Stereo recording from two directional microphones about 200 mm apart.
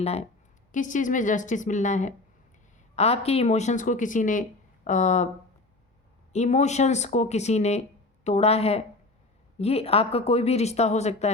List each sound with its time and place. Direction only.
0.0 s speech: 30° left (ahead or behind)
6.3 s speech: 35° left (ahead or behind)